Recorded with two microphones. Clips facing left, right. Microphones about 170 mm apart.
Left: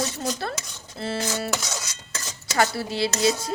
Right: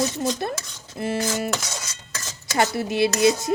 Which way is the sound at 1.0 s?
15° right (ahead or behind).